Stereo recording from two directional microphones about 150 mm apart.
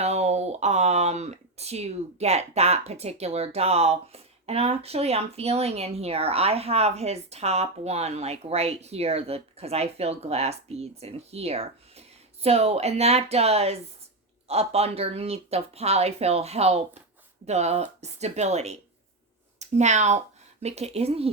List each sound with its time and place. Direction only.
0.0 s speech: 45° right (ahead or behind)